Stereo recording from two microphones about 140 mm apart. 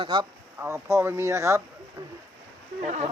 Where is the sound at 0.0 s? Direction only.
35° right (ahead or behind).